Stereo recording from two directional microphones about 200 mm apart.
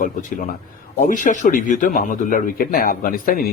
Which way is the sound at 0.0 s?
40° left (ahead or behind).